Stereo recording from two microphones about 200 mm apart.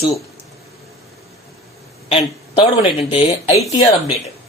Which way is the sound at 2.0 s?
30° left (ahead or behind).